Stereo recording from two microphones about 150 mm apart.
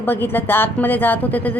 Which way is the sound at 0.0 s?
15° left (ahead or behind).